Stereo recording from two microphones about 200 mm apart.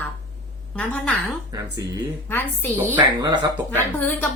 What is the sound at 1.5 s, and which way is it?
Speech, 20° right (ahead or behind).